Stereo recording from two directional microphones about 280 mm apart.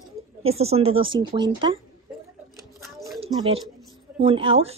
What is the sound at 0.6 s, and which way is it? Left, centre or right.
Speech, right.